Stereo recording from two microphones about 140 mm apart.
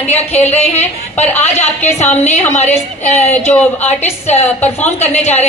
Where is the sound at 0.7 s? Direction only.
50° left (ahead or behind).